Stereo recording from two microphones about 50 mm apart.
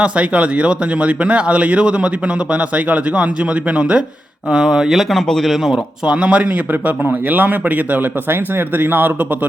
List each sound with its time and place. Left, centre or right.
0.0 s speech: right; by 5.8 s centre
6.1 s speech: right
6.7 s speech: right